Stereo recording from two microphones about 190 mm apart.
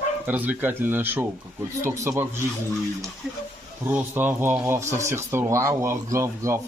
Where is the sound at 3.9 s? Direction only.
10° right (ahead or behind).